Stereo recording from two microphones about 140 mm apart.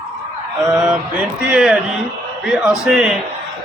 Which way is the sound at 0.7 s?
15° right (ahead or behind).